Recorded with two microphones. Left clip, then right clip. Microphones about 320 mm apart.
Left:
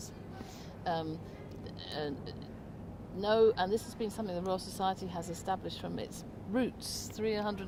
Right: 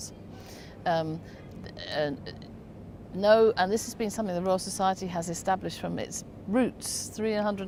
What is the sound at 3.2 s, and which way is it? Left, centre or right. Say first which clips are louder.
Speech: right 7 dB; right.